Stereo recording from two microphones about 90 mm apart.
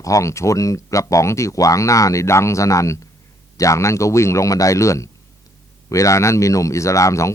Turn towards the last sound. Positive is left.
turn(degrees=35)  # may be behind; listen again after turning